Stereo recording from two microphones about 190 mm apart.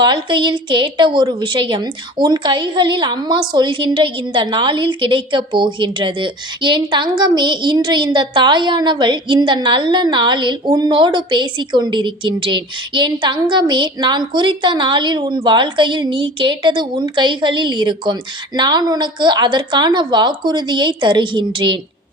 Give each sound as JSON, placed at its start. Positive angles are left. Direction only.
{"t": 0.0, "sound": "a woman's voice", "side_deg": -25}